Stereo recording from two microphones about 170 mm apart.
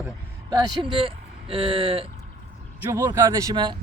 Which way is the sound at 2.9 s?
20° right (ahead or behind).